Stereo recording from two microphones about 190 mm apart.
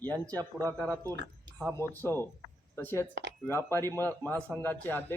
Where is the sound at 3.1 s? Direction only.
70° right (ahead or behind).